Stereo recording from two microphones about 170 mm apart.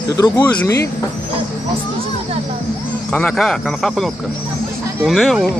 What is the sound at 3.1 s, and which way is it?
Speech, 5° left (ahead or behind).